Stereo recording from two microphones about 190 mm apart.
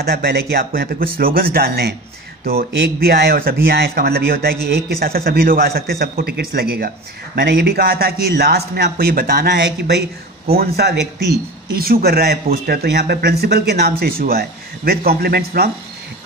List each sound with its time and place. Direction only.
0.0 s speech: 55° right (ahead or behind)